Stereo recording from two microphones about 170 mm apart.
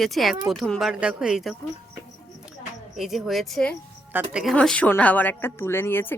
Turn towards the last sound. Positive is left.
turn(degrees=15)  # may be behind; listen again after turning